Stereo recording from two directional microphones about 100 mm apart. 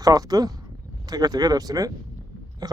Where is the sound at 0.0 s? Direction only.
40° right (ahead or behind).